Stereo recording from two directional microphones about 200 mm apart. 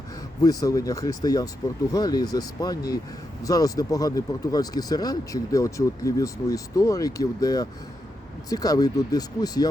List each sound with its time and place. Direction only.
0.4 s speech: 15° left (ahead or behind)